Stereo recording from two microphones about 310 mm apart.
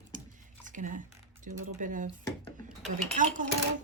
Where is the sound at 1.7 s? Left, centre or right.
Right.